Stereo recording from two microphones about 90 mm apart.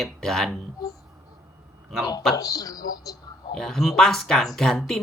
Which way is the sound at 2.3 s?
40° left (ahead or behind).